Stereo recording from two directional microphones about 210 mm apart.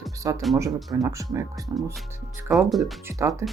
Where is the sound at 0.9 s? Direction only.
15° right (ahead or behind).